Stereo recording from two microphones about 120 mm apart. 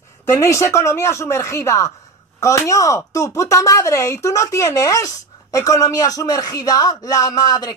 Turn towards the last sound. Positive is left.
turn(degrees=30)  # may be behind; listen again after turning